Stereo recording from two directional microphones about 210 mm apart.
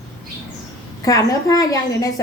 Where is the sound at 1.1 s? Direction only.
15° left (ahead or behind).